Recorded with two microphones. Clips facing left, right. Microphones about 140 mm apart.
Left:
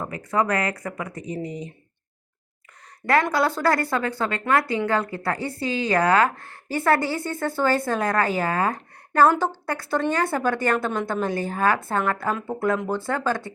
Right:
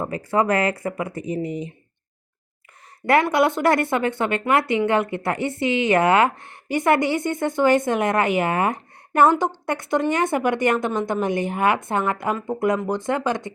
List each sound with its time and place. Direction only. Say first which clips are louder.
0.0 s speech: right 3 dB; 25° right (ahead or behind)
3.3 s speech: right 3 dB; 20° right (ahead or behind)